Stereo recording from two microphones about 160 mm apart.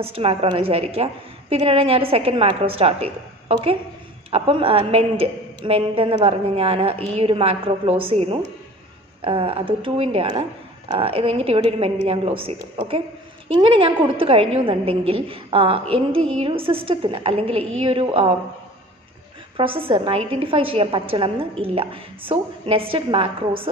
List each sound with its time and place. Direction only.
0.0 s a woman's voice: 35° right (ahead or behind)
4.3 s a woman's voice: 35° right (ahead or behind)
19.5 s a woman's voice: 35° right (ahead or behind)